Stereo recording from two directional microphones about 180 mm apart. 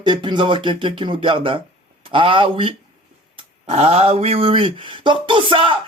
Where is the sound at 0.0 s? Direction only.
25° right (ahead or behind).